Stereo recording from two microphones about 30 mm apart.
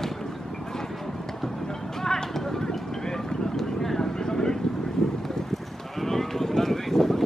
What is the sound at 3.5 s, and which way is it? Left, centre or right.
Vehicle, centre.